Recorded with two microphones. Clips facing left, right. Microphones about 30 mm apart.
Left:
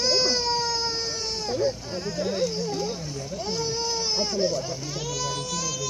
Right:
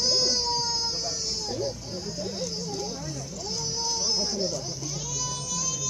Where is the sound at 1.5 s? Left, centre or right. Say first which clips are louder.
Left 5 dB; left.